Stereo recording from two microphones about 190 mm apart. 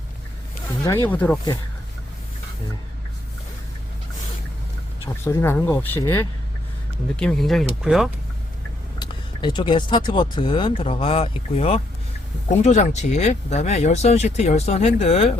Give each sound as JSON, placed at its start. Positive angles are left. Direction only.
{"t": 0.8, "sound": "speech", "side_deg": 10}
{"t": 5.3, "sound": "speech", "side_deg": 10}
{"t": 9.0, "sound": "speech", "side_deg": 25}